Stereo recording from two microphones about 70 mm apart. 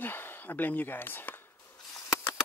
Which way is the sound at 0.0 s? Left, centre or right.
Left.